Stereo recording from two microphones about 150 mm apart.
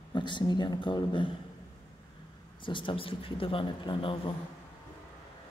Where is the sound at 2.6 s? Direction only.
35° left (ahead or behind).